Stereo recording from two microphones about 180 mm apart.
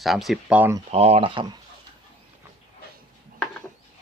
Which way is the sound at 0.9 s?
35° right (ahead or behind).